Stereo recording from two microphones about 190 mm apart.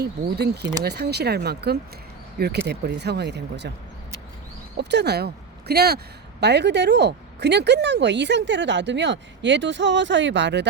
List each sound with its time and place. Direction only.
0.0 s speech: 60° right (ahead or behind)
4.8 s speech: 65° right (ahead or behind)